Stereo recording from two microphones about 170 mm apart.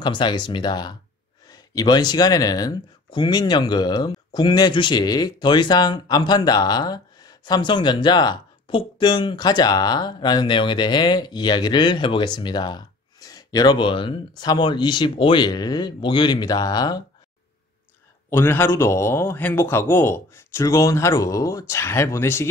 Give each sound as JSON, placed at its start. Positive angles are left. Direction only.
{"t": 0.0, "sound": "speech", "side_deg": 25}
{"t": 18.3, "sound": "speech", "side_deg": 15}